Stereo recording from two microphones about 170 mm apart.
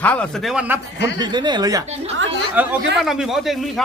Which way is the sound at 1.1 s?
25° right (ahead or behind).